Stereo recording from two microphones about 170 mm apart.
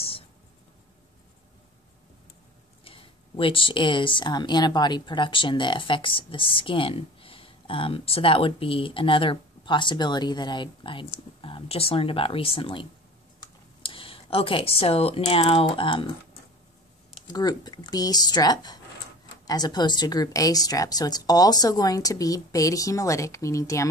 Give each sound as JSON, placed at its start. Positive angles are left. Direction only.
{"t": 2.8, "sound": "speech", "side_deg": 30}
{"t": 17.3, "sound": "speech", "side_deg": 25}